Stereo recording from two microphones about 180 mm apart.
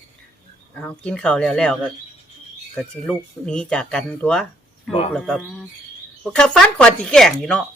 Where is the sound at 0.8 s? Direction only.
5° left (ahead or behind).